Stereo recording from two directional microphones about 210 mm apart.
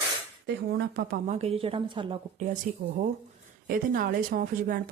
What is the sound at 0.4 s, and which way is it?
Speech, 50° right (ahead or behind).